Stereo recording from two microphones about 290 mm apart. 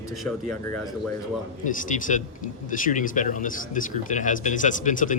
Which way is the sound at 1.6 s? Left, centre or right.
Left.